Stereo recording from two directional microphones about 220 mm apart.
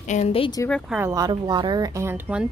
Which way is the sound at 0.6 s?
Centre (ahead or behind).